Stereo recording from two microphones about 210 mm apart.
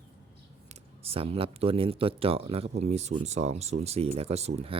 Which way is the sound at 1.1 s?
25° right (ahead or behind).